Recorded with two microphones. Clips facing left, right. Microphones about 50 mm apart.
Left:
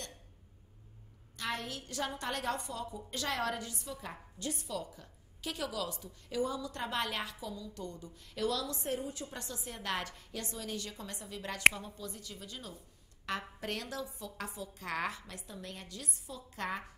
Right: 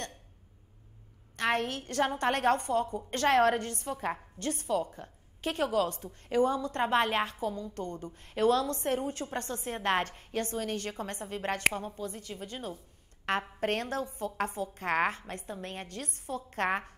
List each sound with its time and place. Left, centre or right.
1.3 s a woman's voice: right